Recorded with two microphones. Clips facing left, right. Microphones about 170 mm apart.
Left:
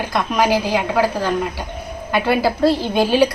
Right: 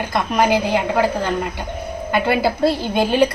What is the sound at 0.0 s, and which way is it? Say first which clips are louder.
A woman's voice: even; centre (ahead or behind).